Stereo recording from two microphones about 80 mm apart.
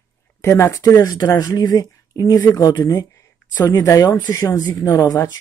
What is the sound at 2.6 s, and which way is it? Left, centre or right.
Speech, left.